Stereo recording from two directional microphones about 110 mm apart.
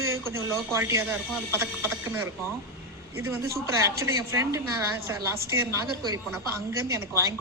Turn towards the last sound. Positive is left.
turn(degrees=-30)  # may be behind; listen again after turning